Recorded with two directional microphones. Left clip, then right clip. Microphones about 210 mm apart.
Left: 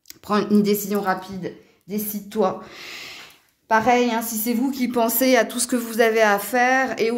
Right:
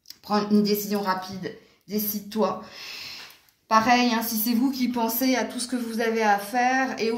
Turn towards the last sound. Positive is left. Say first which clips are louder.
# left 4 dB
turn(degrees=60)  # may be behind; listen again after turning